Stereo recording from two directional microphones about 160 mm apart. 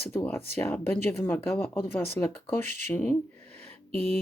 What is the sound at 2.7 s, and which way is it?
Speech, 50° right (ahead or behind).